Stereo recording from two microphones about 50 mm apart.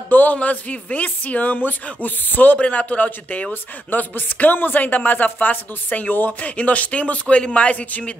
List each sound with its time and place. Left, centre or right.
0.1 s speech: left
2.6 s a man's voice: left